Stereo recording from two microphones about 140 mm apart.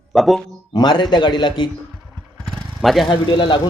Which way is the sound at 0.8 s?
30° left (ahead or behind).